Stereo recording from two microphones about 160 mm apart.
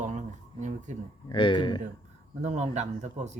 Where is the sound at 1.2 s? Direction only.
30° left (ahead or behind).